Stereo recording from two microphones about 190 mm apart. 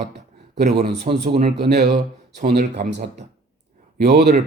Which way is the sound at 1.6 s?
60° right (ahead or behind).